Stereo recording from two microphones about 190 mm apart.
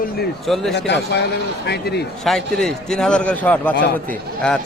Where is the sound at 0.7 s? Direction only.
65° left (ahead or behind).